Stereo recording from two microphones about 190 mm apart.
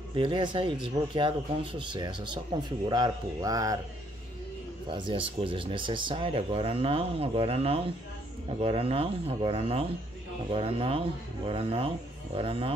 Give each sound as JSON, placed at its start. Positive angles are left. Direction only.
{"t": 0.1, "sound": "speech", "side_deg": -25}
{"t": 4.8, "sound": "speech", "side_deg": -25}